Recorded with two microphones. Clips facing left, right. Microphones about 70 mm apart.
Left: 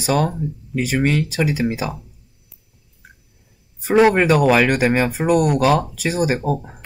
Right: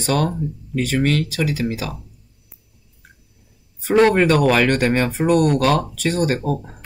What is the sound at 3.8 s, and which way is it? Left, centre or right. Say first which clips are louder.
Speech: left 1 dB; centre.